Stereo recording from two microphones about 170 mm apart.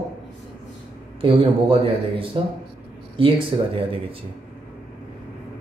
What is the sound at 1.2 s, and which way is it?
Speech, 30° right (ahead or behind).